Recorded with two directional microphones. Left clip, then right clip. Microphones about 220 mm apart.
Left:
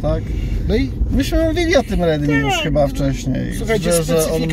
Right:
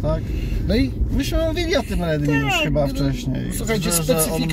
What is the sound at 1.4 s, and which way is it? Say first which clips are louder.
Speech: left 6 dB; 25° left (ahead or behind).